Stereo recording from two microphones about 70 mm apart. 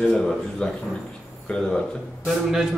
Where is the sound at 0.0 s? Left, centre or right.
Centre.